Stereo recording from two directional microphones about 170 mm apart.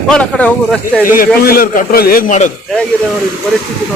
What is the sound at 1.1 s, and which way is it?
A man's voice, 55° left (ahead or behind).